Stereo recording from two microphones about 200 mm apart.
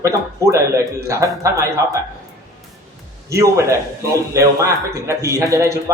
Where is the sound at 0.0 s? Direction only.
15° right (ahead or behind).